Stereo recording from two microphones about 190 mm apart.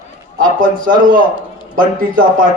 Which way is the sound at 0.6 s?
50° right (ahead or behind).